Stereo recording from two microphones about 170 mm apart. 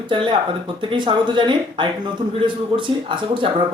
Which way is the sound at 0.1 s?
30° right (ahead or behind).